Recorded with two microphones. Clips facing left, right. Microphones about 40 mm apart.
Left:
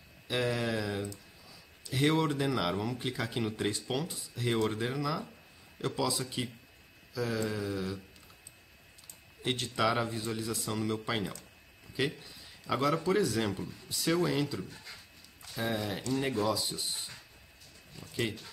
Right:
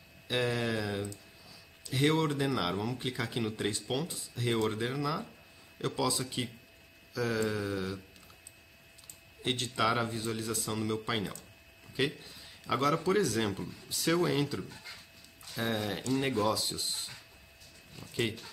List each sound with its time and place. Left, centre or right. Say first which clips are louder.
0.3 s a sound: even; centre
1.9 s speech: even; centre
9.4 s a man's voice: even; centre
13.4 s speech: even; centre
16.3 s speech: right 1 dB; centre
18.0 s speech: right 1 dB; centre